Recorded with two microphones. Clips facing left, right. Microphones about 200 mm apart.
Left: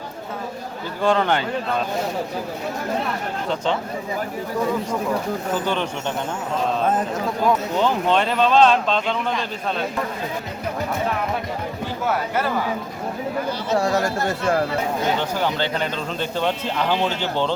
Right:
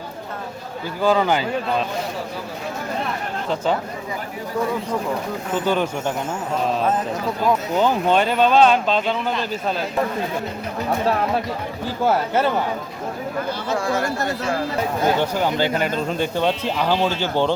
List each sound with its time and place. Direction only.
1.0 s speech: 5° right (ahead or behind)
5.6 s speech: 10° right (ahead or behind)
7.4 s speech: 5° right (ahead or behind)
12.0 s a man's voice: 25° right (ahead or behind)
13.8 s speech: 45° left (ahead or behind)
15.2 s speech: 10° right (ahead or behind)